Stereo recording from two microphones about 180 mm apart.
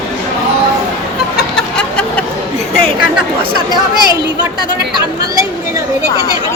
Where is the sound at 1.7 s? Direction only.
10° left (ahead or behind).